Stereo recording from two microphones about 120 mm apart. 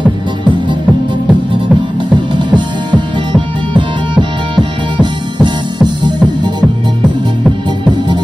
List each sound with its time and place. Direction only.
2.1 s music: 40° right (ahead or behind)